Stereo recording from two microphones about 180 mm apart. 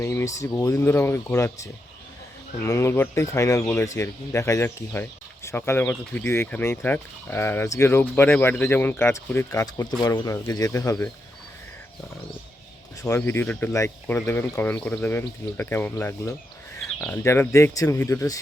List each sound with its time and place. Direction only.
0.0 s speech: 15° left (ahead or behind)
13.0 s speech: 15° left (ahead or behind)